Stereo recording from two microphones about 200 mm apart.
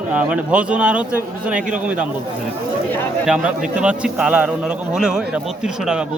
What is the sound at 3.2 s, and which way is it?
A man's voice, 5° right (ahead or behind).